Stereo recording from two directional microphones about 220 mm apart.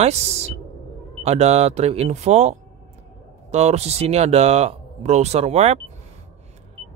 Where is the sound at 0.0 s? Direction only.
30° right (ahead or behind).